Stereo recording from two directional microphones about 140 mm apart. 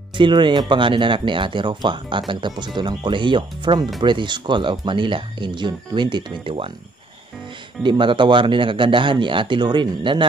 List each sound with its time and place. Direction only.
0.2 s speech: 35° right (ahead or behind)
7.8 s speech: 35° right (ahead or behind)